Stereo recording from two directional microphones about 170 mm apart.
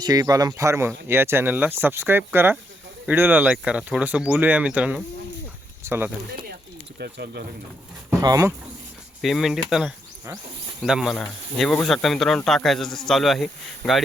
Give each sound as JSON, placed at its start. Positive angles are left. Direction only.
{"t": 0.0, "sound": "speech", "side_deg": -20}
{"t": 7.0, "sound": "speech", "side_deg": -70}
{"t": 8.2, "sound": "speech", "side_deg": -20}
{"t": 9.2, "sound": "speech", "side_deg": 0}